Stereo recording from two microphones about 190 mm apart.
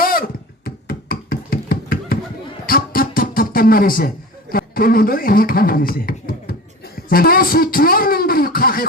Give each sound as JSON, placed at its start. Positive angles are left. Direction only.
{"t": 0.0, "sound": "a sound", "side_deg": 50}
{"t": 2.6, "sound": "music", "side_deg": 50}
{"t": 4.5, "sound": "speech", "side_deg": 50}